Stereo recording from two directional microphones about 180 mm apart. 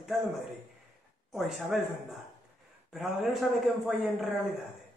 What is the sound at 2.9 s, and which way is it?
A man's voice, centre (ahead or behind).